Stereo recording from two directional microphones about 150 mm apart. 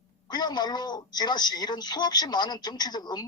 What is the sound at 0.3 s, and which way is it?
Speech, 30° left (ahead or behind).